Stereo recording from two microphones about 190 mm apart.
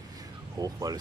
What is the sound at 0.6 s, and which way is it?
Speech, 20° right (ahead or behind).